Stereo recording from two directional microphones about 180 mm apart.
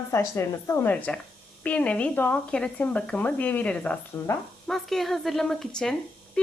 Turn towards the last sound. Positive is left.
turn(degrees=5)  # may be behind; listen again after turning